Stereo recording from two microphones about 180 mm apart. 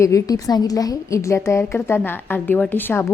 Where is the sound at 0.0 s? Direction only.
20° left (ahead or behind).